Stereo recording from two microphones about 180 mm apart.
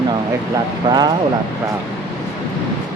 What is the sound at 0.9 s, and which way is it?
Speech, 25° right (ahead or behind).